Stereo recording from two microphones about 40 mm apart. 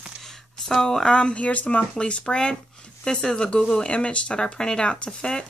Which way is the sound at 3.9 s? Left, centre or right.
Left.